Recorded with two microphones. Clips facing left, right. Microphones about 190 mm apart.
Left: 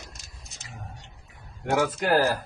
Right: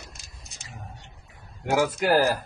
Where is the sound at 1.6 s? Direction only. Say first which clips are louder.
Right 2 dB; 10° right (ahead or behind).